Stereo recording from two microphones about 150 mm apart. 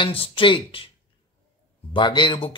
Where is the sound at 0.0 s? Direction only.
35° left (ahead or behind).